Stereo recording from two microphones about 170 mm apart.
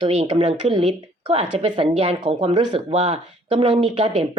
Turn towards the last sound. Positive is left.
turn(degrees=-35)  # may be behind; listen again after turning